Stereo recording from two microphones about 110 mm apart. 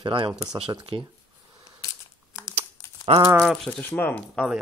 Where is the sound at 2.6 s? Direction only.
60° right (ahead or behind).